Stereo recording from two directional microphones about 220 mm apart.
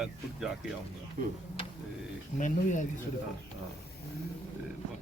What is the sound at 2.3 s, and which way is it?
Speech, 35° left (ahead or behind).